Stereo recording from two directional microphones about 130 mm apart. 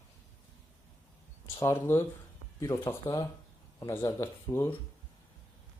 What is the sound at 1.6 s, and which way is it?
Speech, 20° left (ahead or behind).